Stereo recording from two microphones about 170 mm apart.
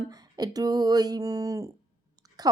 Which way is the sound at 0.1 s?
25° right (ahead or behind).